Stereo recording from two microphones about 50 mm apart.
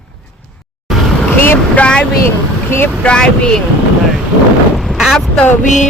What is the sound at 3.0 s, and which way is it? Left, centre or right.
Speech, centre.